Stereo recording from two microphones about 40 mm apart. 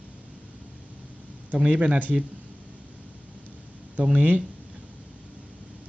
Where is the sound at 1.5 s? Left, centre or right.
Right.